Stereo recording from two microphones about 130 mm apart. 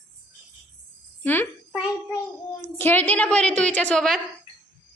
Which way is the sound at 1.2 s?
15° left (ahead or behind).